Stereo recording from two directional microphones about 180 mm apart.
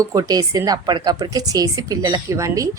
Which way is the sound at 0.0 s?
20° right (ahead or behind).